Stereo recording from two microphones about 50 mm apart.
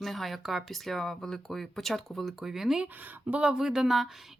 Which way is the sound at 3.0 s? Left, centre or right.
Right.